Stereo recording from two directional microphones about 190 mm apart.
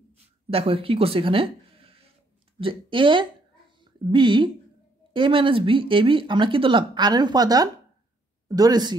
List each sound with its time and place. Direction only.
0.5 s a woman's voice: 30° right (ahead or behind)